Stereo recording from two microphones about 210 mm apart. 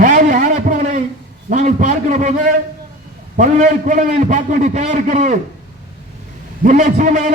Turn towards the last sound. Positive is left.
turn(degrees=-35)  # may be behind; listen again after turning